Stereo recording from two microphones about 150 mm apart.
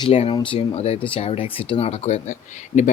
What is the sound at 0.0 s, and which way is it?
Speech, 40° left (ahead or behind).